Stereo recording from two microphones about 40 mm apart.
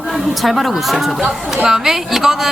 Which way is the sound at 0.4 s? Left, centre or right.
Centre.